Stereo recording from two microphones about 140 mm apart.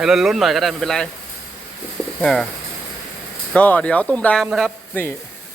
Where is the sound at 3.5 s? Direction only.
10° left (ahead or behind).